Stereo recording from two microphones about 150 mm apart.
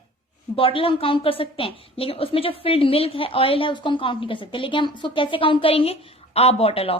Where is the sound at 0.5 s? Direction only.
35° left (ahead or behind).